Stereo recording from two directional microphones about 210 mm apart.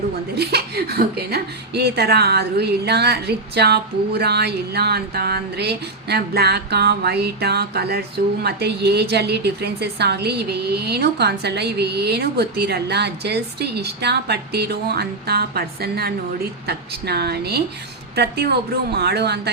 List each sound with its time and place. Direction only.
0.3 s a woman's voice: 50° right (ahead or behind)